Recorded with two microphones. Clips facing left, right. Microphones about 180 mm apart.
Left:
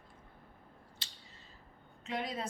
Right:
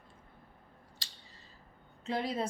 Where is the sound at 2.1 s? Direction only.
30° right (ahead or behind).